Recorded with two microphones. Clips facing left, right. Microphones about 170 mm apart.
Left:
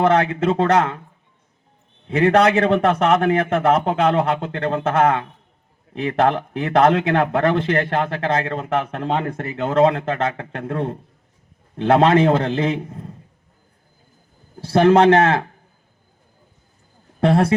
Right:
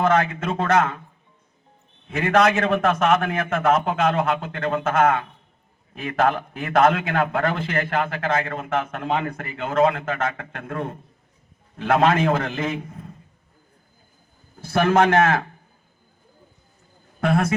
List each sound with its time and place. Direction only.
0.0 s a man's voice: 35° left (ahead or behind)
2.0 s a man's voice: 35° left (ahead or behind)
14.6 s a man's voice: 35° left (ahead or behind)
17.2 s speech: 35° left (ahead or behind)